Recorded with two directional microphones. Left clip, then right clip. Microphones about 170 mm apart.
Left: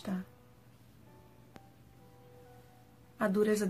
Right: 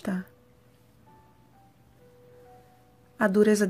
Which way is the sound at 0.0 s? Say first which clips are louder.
Right 7 dB; 35° right (ahead or behind).